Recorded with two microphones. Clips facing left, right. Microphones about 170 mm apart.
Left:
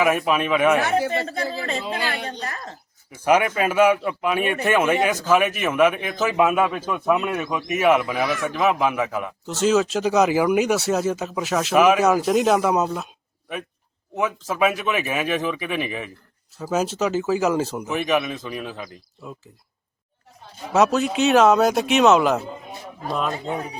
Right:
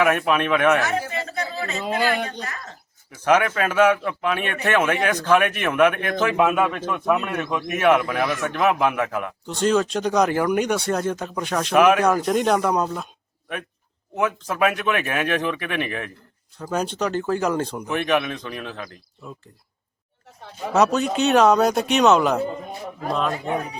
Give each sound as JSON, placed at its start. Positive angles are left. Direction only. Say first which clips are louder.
{"t": 0.0, "sound": "a man's voice", "louder": "even", "side_deg": 5}
{"t": 0.8, "sound": "speech", "louder": "left 4 dB", "side_deg": 30}
{"t": 1.8, "sound": "speech", "louder": "right 5 dB", "side_deg": -50}
{"t": 2.4, "sound": "speech", "louder": "left 2 dB", "side_deg": 35}
{"t": 3.2, "sound": "a man's voice", "louder": "even", "side_deg": 10}
{"t": 14.2, "sound": "a man's voice", "louder": "even", "side_deg": 0}
{"t": 20.7, "sound": "a man's voice", "louder": "left 1 dB", "side_deg": 0}